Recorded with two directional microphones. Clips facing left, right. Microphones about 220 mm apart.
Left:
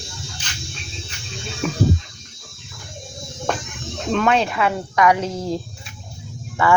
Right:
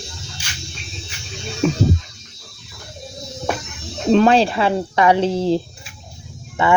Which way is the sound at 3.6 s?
50° left (ahead or behind).